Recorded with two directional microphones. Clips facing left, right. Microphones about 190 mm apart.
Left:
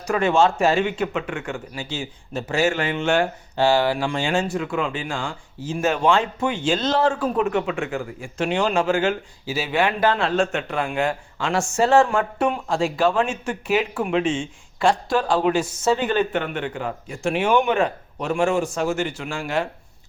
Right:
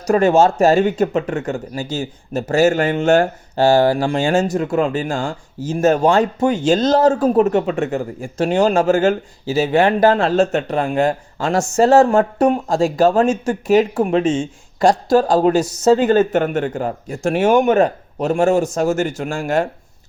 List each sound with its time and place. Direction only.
0.0 s speech: 40° right (ahead or behind)